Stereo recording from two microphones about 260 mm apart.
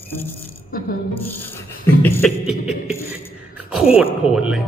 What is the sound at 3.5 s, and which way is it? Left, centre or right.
Speech, centre.